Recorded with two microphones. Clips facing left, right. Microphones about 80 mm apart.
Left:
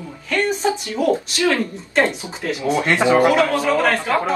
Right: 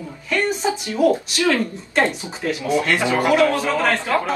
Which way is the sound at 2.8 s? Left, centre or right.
Left.